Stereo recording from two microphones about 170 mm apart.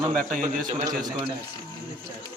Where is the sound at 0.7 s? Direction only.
20° right (ahead or behind).